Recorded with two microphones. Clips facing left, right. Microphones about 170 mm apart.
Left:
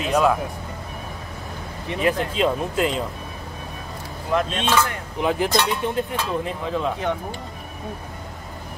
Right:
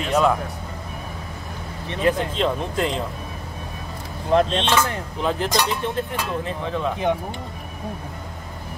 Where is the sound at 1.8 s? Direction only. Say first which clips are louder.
Right 1 dB; 10° left (ahead or behind).